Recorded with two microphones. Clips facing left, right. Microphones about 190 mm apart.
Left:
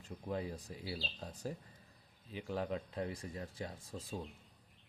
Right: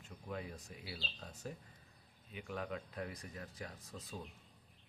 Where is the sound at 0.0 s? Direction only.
30° left (ahead or behind).